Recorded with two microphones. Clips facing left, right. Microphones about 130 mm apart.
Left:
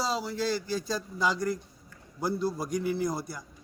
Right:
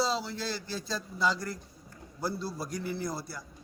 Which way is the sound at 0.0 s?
10° left (ahead or behind).